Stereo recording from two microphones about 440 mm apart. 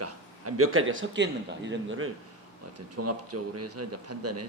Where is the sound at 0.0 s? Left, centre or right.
Right.